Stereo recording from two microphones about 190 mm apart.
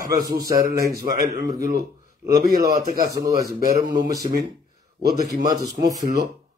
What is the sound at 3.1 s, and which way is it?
A man's voice, 20° right (ahead or behind).